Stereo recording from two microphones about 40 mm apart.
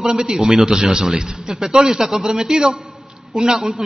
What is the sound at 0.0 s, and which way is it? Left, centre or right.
A man's voice, centre.